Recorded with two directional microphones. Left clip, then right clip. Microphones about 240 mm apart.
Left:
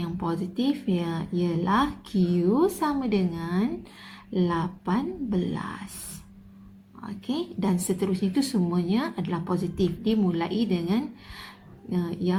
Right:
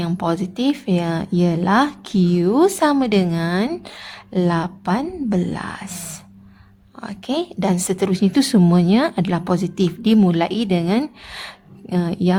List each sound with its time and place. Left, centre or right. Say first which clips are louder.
0.0 s speech: right 9 dB; right
7.0 s speech: right 8 dB; right